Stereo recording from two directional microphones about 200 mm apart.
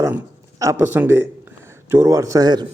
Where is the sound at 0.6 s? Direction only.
15° right (ahead or behind).